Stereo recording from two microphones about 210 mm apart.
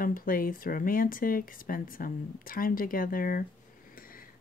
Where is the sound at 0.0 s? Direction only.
45° left (ahead or behind).